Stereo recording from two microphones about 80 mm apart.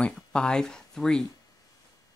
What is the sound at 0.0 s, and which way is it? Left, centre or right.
Speech, centre.